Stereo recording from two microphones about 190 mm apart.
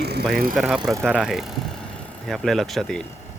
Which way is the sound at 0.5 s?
Centre (ahead or behind).